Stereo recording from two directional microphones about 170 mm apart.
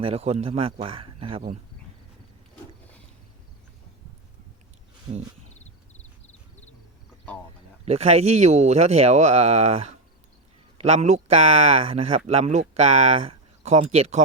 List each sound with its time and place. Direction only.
0.0 s speech: 35° right (ahead or behind)
5.6 s a sound: 40° left (ahead or behind)
7.9 s speech: 35° right (ahead or behind)